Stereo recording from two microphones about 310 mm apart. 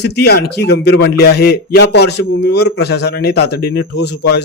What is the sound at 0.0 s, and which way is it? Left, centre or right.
A man's voice, left.